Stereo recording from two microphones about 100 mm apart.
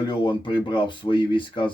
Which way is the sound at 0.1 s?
50° left (ahead or behind).